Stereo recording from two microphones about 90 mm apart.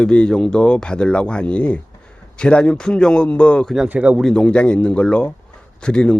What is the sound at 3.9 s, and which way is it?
Speech, 15° right (ahead or behind).